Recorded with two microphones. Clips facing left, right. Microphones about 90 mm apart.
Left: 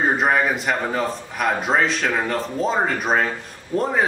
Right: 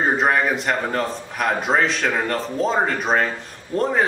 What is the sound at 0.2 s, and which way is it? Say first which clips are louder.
A man's voice: even; centre (ahead or behind).